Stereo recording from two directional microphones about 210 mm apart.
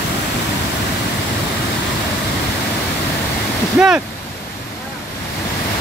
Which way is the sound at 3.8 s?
5° right (ahead or behind).